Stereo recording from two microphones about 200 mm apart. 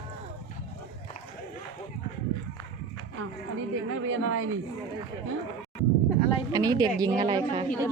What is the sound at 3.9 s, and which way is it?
Speech, 85° right.